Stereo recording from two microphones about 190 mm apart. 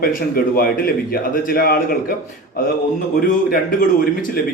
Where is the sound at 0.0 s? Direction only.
50° left (ahead or behind).